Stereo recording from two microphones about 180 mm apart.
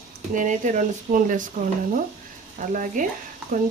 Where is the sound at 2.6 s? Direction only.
45° right (ahead or behind).